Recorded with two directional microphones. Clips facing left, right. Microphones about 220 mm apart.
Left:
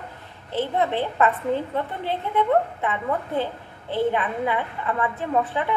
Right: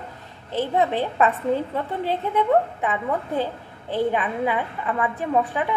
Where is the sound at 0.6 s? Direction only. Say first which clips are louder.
Right 1 dB; 15° right (ahead or behind).